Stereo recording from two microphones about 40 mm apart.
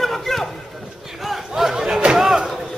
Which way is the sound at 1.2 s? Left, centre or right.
Centre.